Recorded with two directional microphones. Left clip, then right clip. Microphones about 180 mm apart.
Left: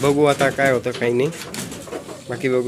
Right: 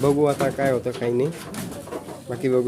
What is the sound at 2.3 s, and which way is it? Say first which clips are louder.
Speech: left 1 dB; 10° right (ahead or behind).